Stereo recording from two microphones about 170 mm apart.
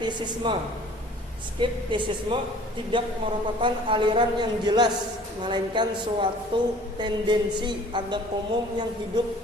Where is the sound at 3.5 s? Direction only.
30° right (ahead or behind).